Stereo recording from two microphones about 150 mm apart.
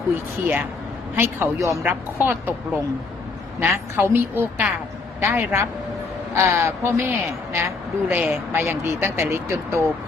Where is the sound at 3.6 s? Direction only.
15° right (ahead or behind).